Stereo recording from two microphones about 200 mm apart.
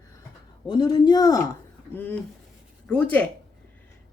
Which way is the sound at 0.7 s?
20° left (ahead or behind).